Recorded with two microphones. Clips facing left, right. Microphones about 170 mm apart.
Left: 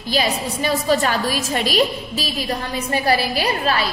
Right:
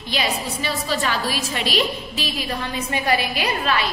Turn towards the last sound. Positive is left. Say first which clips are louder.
# left 2 dB
turn(degrees=35)  # may be behind; listen again after turning